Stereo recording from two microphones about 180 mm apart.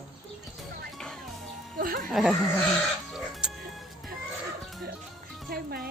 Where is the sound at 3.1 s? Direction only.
5° right (ahead or behind).